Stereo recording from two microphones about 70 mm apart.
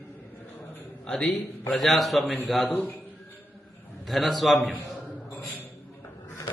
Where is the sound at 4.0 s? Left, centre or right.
Centre.